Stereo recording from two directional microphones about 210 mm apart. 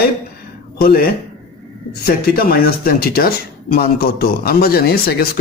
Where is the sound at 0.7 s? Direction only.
45° left (ahead or behind).